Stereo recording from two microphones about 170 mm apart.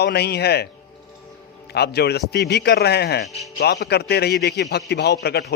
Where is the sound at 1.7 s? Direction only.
70° left (ahead or behind).